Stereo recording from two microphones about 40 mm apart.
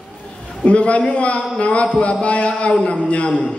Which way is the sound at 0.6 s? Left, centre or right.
Left.